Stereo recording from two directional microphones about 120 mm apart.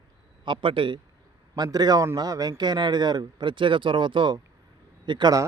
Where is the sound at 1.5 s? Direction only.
35° right (ahead or behind).